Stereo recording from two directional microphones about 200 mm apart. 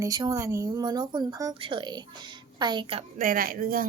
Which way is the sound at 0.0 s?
20° right (ahead or behind).